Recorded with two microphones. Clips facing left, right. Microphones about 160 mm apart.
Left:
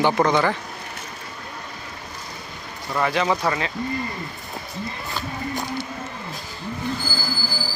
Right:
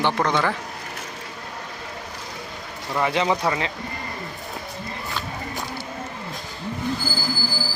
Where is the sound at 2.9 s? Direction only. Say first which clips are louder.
Even; 20° right (ahead or behind).